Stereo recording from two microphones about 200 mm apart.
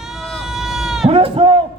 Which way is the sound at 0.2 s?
Centre (ahead or behind).